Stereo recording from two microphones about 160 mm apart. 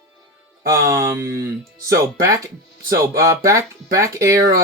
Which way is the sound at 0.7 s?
20° right (ahead or behind).